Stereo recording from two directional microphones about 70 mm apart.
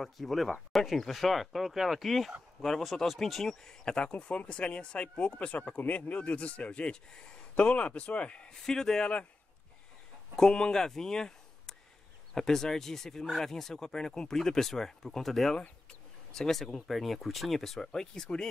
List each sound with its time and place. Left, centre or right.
0.0 s speech: centre
10.3 s speech: centre